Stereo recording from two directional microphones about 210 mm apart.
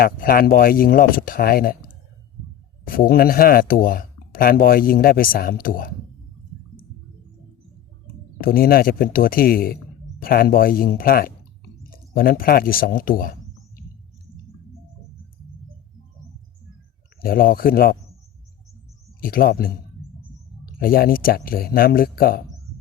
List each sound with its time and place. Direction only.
0.0 s speech: 45° left (ahead or behind)
2.8 s speech: 45° left (ahead or behind)
8.4 s speech: 45° left (ahead or behind)
17.2 s speech: 45° left (ahead or behind)
19.2 s speech: 45° left (ahead or behind)